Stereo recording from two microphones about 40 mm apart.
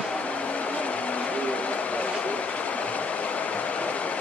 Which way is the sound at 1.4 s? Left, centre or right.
Left.